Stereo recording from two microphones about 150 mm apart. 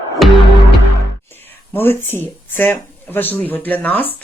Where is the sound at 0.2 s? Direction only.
Centre (ahead or behind).